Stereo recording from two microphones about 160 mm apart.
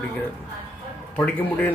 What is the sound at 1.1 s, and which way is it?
Speech, 10° left (ahead or behind).